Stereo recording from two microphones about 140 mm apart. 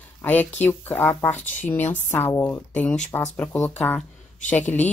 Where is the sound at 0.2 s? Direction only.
10° left (ahead or behind).